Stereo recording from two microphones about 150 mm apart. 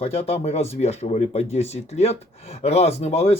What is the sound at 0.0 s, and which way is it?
Speech, 40° left (ahead or behind).